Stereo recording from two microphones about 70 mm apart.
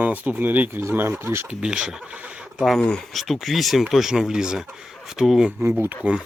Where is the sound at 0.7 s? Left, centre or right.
Right.